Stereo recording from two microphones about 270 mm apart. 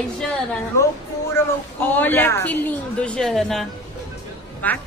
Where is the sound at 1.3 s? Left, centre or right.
Centre.